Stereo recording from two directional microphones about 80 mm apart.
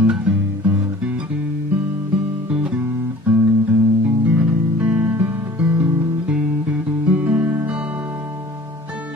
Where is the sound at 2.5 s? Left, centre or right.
Centre.